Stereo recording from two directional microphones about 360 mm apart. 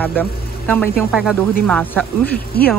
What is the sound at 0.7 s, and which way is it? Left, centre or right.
Speech, centre.